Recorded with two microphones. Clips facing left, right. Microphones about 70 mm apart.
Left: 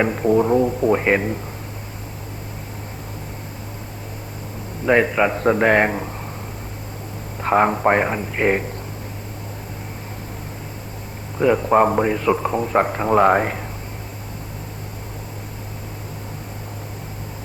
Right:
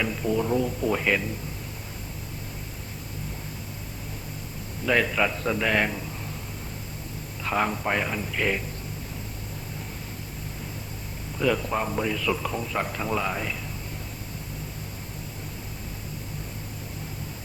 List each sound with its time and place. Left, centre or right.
0.0 s a man's voice: left
4.9 s a man's voice: left
5.3 s a man's voice: left
7.4 s a man's voice: left
11.3 s a man's voice: left
11.7 s a man's voice: left